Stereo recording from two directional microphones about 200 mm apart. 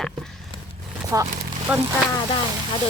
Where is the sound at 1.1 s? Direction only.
15° right (ahead or behind).